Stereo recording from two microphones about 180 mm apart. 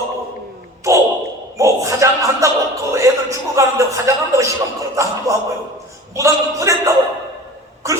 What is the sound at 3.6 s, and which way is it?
Speech, 15° right (ahead or behind).